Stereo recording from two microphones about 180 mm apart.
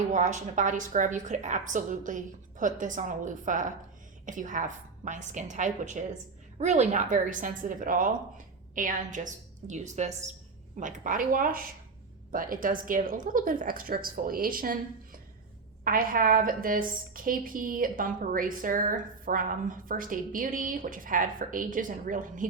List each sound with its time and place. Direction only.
0.1 s a woman's voice: 45° right (ahead or behind)